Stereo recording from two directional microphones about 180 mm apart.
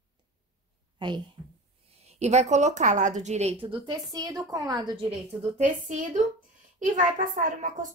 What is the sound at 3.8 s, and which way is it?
A woman's voice, 25° right (ahead or behind).